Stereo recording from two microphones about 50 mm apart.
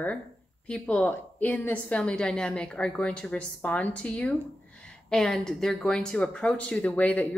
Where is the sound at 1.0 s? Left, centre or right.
Left.